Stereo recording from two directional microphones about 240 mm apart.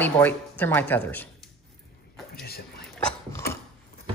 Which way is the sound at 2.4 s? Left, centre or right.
Left.